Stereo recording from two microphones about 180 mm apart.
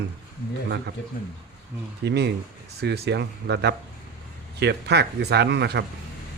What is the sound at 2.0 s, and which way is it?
Speech, 70° right (ahead or behind).